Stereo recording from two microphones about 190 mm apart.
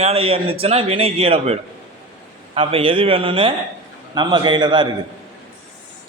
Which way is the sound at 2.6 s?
25° right (ahead or behind).